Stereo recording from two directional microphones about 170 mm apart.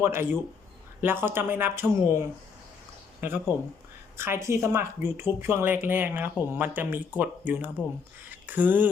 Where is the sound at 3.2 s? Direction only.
15° right (ahead or behind).